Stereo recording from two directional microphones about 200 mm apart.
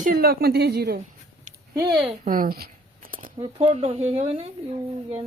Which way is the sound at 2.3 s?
45° right (ahead or behind).